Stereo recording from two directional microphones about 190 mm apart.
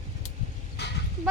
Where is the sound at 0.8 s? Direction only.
65° left (ahead or behind).